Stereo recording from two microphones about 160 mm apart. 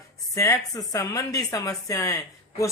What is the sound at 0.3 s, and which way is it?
Speech, 20° left (ahead or behind).